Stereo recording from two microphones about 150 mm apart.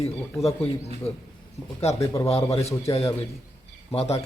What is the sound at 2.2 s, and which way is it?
Speech, 45° left (ahead or behind).